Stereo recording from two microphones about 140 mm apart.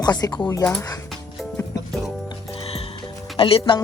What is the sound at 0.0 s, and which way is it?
Speech, 30° left (ahead or behind).